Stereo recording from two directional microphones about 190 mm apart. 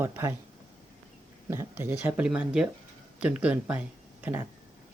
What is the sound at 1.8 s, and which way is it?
Speech, 10° right (ahead or behind).